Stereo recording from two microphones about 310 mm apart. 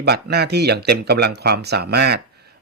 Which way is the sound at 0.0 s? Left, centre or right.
Right.